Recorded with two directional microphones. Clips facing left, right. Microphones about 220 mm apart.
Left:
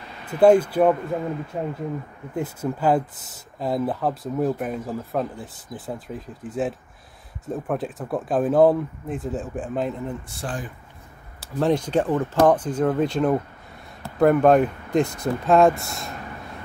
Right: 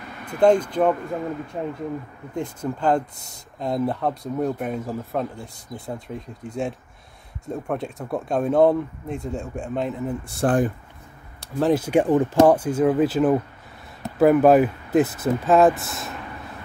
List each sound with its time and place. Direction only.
0.3 s speech: 5° left (ahead or behind)
10.4 s speech: 50° right (ahead or behind)
11.3 s speech: 5° right (ahead or behind)